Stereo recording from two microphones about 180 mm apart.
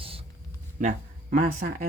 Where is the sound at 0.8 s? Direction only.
50° right (ahead or behind).